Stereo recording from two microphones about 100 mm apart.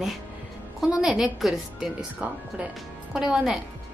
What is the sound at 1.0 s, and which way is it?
Speech, 5° right (ahead or behind).